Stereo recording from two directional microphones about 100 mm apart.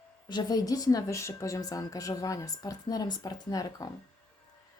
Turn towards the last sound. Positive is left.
turn(degrees=35)  # may be behind; listen again after turning